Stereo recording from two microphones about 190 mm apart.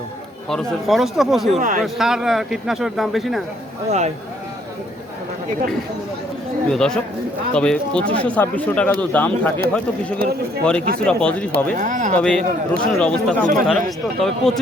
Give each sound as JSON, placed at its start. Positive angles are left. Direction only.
{"t": 0.5, "sound": "a man's voice", "side_deg": 0}
{"t": 1.5, "sound": "speech", "side_deg": -40}
{"t": 1.8, "sound": "a man's voice", "side_deg": 0}
{"t": 3.8, "sound": "speech", "side_deg": -35}
{"t": 6.7, "sound": "a man's voice", "side_deg": 5}
{"t": 10.6, "sound": "a man's voice", "side_deg": 5}
{"t": 11.5, "sound": "speech", "side_deg": -45}
{"t": 12.1, "sound": "a man's voice", "side_deg": 5}